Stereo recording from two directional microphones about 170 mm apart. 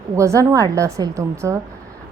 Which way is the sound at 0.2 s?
20° right (ahead or behind).